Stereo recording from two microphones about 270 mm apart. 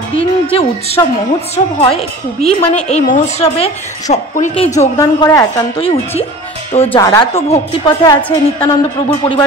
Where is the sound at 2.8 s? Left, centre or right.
Left.